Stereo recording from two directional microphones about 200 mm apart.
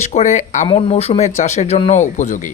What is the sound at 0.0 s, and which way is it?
Speech, 35° left (ahead or behind).